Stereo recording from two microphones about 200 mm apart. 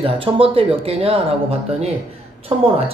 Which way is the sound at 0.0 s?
30° right (ahead or behind).